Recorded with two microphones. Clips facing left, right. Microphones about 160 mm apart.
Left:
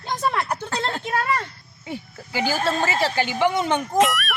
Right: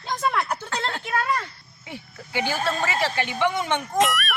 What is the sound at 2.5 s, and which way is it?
Speech, 30° left (ahead or behind).